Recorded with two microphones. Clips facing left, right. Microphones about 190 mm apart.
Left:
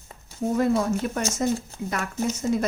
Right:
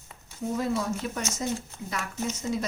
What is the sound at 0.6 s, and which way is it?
Speech, 55° left (ahead or behind).